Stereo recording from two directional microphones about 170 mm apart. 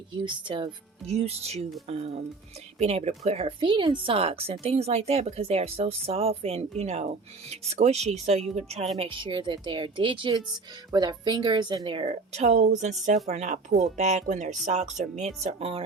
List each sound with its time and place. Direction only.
0.1 s speech: 30° right (ahead or behind)